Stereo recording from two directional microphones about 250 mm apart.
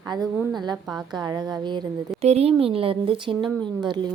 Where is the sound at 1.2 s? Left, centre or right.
Centre.